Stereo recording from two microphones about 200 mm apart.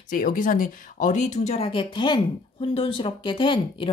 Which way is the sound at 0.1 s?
45° left (ahead or behind).